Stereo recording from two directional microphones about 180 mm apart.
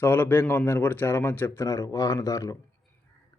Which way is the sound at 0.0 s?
10° left (ahead or behind).